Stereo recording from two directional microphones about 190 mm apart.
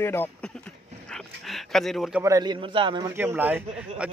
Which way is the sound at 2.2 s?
20° right (ahead or behind).